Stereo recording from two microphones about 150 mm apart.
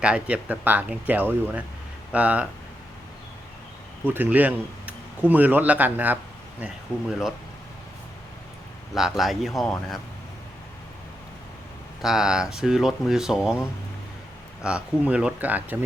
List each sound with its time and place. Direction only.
0.0 s speech: 5° right (ahead or behind)
4.0 s speech: 15° right (ahead or behind)
6.9 s speech: 20° left (ahead or behind)
9.0 s speech: centre (ahead or behind)
12.0 s speech: 5° right (ahead or behind)